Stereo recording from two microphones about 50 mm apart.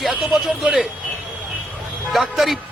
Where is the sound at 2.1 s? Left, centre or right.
Centre.